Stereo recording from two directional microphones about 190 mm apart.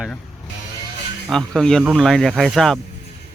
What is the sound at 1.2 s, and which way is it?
Speech, centre (ahead or behind).